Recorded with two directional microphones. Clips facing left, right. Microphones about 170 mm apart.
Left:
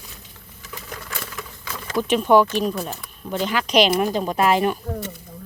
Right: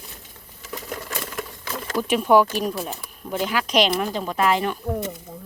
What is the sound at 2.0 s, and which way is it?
Speech, 5° right (ahead or behind).